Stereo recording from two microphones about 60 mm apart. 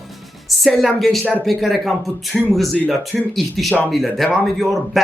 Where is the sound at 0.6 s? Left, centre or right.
Centre.